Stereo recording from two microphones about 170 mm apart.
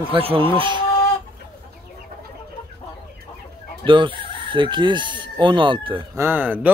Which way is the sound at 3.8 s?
30° right (ahead or behind).